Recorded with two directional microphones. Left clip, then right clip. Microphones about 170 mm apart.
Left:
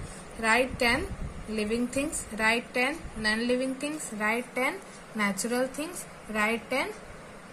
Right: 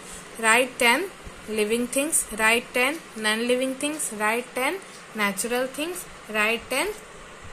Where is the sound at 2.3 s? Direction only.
55° right (ahead or behind).